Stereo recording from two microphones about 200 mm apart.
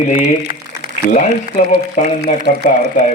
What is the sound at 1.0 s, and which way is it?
Speech, 40° left (ahead or behind).